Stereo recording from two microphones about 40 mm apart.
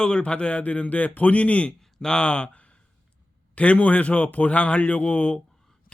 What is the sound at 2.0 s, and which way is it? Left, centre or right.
A man's voice, centre.